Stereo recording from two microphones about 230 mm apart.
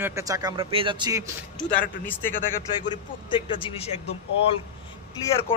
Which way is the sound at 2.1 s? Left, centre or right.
Centre.